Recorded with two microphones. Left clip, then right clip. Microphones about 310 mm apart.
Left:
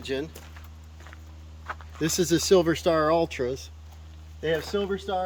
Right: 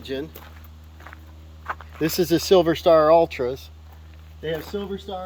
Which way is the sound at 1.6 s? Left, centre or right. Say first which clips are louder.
Right 4 dB; centre.